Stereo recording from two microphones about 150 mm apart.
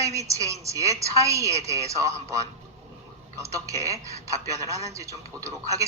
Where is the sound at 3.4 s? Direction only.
20° right (ahead or behind).